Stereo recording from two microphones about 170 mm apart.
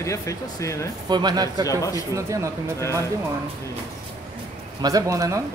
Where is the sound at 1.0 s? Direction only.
25° right (ahead or behind).